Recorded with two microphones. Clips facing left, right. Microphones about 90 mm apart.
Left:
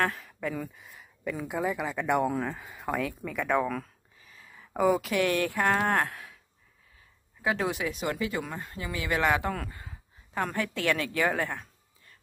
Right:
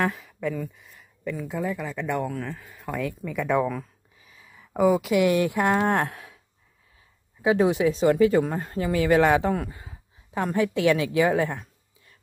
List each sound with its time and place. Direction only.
0.0 s speech: centre (ahead or behind)
0.9 s speech: 15° left (ahead or behind); by 3.6 s centre (ahead or behind)
4.2 s a sound: 10° right (ahead or behind)
4.5 s a sound: centre (ahead or behind)
5.1 s speech: 15° right (ahead or behind)
5.9 s moo: 25° right (ahead or behind)
7.4 s speech: 20° right (ahead or behind)
9.5 s a woman's voice: 20° right (ahead or behind)